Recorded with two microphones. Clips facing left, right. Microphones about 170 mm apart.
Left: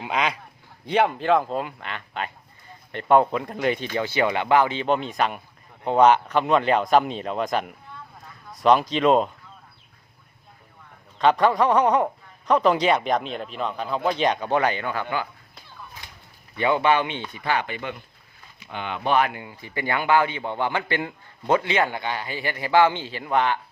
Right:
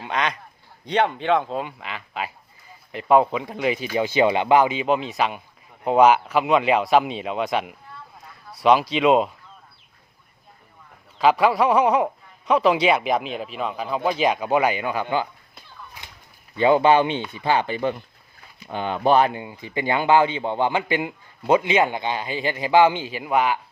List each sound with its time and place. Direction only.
0.0 s speech: 10° left (ahead or behind)
11.2 s speech: 5° right (ahead or behind); by 15.3 s 20° right (ahead or behind)
16.6 s a man's voice: 30° right (ahead or behind); by 23.6 s 10° right (ahead or behind)